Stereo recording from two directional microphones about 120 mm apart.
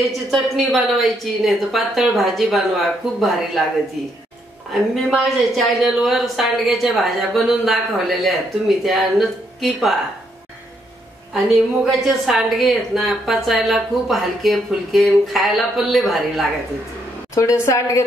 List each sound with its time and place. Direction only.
0.3 s speech: centre (ahead or behind)
4.9 s speech: centre (ahead or behind)
11.3 s speech: centre (ahead or behind)
17.3 s a woman's voice: 25° left (ahead or behind)